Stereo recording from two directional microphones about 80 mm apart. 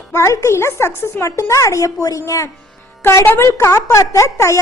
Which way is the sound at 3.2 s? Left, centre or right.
Left.